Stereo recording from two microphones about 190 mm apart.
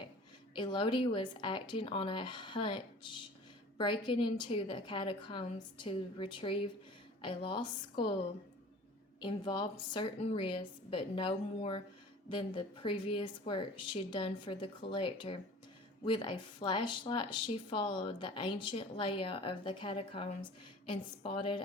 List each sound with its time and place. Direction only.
0.5 s speech: 25° left (ahead or behind)
9.2 s speech: 25° left (ahead or behind)